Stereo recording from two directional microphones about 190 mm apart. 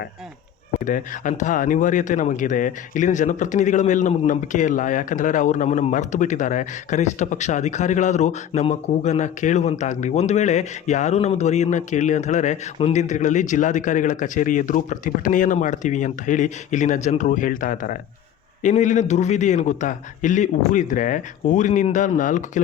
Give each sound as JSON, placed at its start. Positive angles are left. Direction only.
{"t": 0.9, "sound": "speech", "side_deg": 45}